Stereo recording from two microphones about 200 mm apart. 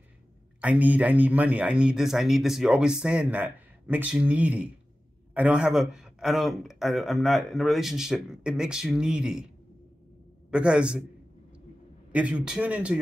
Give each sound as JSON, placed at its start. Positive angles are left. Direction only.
{"t": 0.6, "sound": "a man's voice", "side_deg": -5}
{"t": 10.5, "sound": "a man's voice", "side_deg": -5}
{"t": 12.1, "sound": "a man's voice", "side_deg": -5}